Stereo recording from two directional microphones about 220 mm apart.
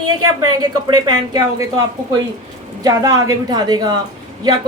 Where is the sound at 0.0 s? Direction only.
80° right.